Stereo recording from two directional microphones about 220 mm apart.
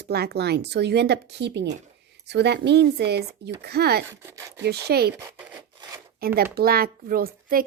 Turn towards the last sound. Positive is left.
turn(degrees=-40)  # may be behind; listen again after turning